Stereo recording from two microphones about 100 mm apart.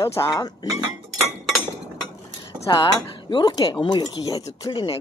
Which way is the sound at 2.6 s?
50° left (ahead or behind).